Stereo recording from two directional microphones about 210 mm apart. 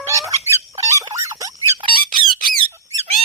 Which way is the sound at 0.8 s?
15° right (ahead or behind).